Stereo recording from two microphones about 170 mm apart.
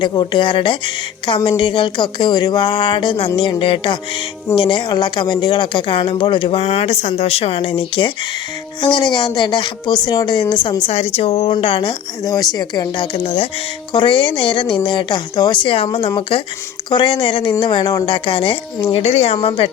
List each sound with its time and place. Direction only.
0.0 s speech: 25° left (ahead or behind)
10.8 s speech: 40° left (ahead or behind)